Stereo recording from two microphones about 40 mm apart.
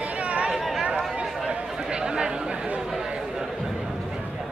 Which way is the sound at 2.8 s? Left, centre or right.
Centre.